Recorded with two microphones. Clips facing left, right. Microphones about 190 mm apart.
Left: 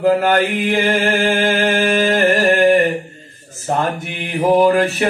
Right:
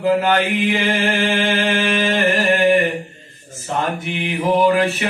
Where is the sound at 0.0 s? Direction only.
50° left (ahead or behind).